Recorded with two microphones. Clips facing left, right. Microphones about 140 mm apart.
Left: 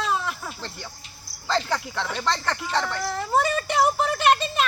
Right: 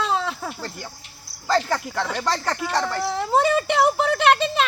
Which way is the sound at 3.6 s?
70° right (ahead or behind).